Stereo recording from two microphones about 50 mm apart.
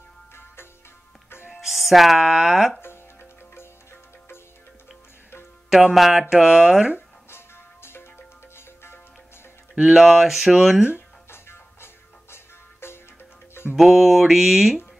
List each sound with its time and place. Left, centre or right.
1.5 s speech: centre
2.8 s music: left
5.9 s speech: centre
7.2 s music: left
9.8 s speech: centre
11.2 s music: left
13.7 s speech: centre